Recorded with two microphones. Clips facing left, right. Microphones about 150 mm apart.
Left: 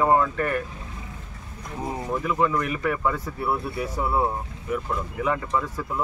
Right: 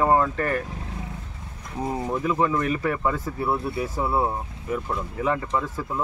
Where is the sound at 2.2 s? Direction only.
25° right (ahead or behind).